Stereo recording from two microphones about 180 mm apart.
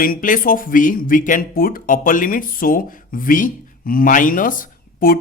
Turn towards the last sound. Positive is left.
turn(degrees=50)  # may be behind; listen again after turning